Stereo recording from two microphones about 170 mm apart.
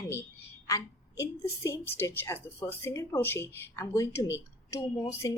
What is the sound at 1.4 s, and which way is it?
A woman's voice, 15° left (ahead or behind).